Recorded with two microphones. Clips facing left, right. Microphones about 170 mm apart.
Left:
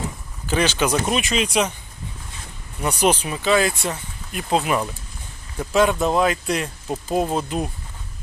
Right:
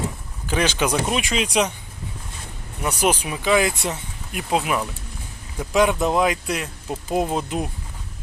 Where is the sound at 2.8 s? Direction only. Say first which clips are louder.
Left 2 dB; 10° right (ahead or behind).